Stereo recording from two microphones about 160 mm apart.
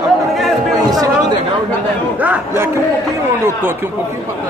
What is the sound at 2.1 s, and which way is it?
Speech, 10° right (ahead or behind).